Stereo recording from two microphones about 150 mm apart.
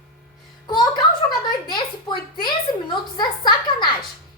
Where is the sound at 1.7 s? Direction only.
30° left (ahead or behind).